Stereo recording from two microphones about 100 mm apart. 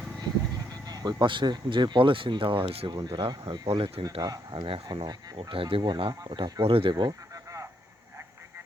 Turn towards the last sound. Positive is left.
turn(degrees=-50)  # may be behind; listen again after turning